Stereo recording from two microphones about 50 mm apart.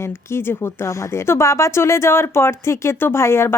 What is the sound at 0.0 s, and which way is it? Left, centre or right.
A woman's voice, left.